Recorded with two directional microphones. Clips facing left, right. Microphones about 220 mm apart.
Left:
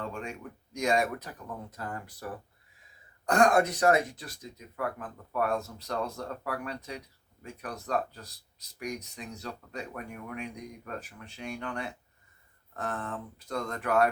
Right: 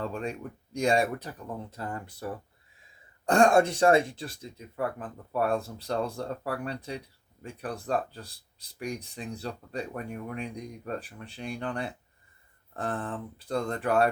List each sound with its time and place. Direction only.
0.0 s speech: 35° right (ahead or behind)
3.2 s speech: 30° right (ahead or behind)